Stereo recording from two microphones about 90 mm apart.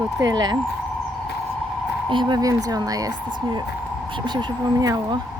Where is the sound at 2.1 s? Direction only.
60° right (ahead or behind).